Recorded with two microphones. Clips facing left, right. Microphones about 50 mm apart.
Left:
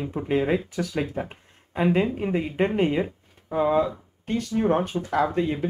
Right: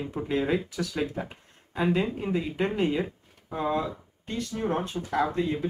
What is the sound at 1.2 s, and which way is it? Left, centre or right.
Speech, left.